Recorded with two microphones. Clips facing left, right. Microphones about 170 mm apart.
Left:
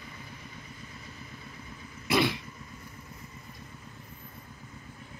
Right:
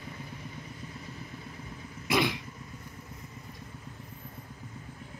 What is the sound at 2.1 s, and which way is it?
Throat clearing, 15° right (ahead or behind).